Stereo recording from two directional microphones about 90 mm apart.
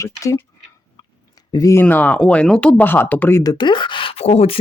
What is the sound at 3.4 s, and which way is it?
Speech, 50° left (ahead or behind).